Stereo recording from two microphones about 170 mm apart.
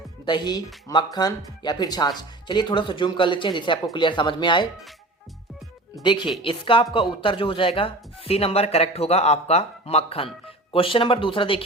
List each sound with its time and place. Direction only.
0.3 s speech: 25° left (ahead or behind)
6.0 s speech: 30° left (ahead or behind)